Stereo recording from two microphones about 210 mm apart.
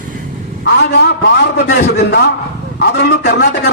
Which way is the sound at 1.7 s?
50° left (ahead or behind).